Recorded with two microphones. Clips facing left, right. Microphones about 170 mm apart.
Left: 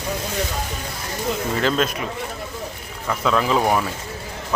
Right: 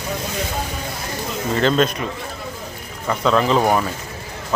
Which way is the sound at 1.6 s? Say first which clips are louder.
Right 5 dB; 5° left (ahead or behind).